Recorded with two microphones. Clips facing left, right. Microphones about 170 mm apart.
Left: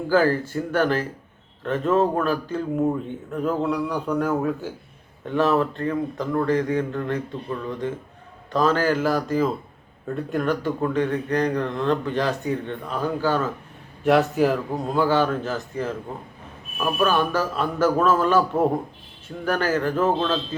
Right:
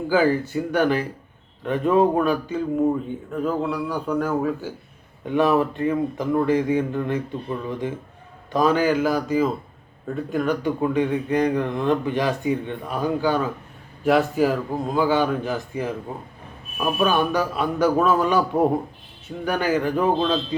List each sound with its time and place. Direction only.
0.1 s speech: 10° right (ahead or behind)
2.6 s a man's voice: centre (ahead or behind)
5.2 s speech: 15° right (ahead or behind)
14.0 s a man's voice: centre (ahead or behind)
19.5 s speech: 15° right (ahead or behind)